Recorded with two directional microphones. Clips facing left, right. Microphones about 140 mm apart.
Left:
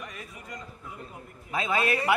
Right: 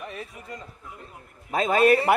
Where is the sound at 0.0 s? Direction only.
30° right (ahead or behind).